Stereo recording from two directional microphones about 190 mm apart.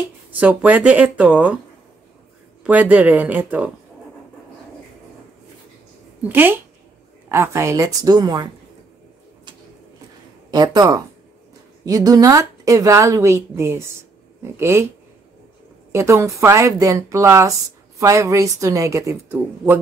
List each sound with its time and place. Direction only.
0.3 s a woman's voice: 10° right (ahead or behind)
2.6 s a woman's voice: 10° right (ahead or behind)
6.2 s a woman's voice: 10° right (ahead or behind)
10.5 s a woman's voice: 20° right (ahead or behind)
15.9 s a woman's voice: 15° right (ahead or behind)